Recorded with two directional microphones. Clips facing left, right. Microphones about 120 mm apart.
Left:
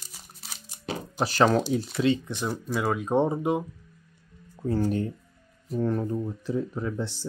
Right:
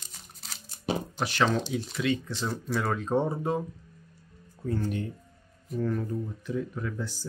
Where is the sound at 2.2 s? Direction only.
15° left (ahead or behind).